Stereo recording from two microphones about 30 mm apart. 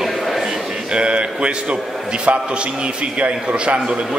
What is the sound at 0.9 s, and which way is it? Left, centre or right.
Speech, right.